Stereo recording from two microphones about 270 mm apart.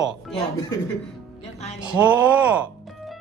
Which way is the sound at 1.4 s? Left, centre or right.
Left.